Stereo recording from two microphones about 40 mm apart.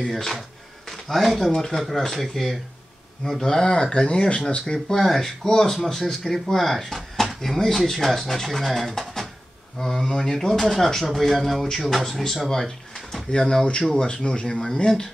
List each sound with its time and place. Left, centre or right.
0.0 s speech: centre; by 4.7 s left
4.7 s speech: centre
11.1 s speech: centre